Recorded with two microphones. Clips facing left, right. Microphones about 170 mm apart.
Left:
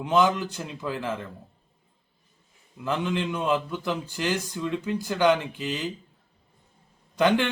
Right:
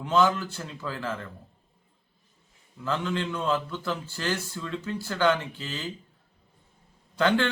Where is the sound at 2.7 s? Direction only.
15° left (ahead or behind).